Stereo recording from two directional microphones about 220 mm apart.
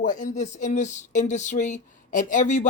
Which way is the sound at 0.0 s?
35° left (ahead or behind).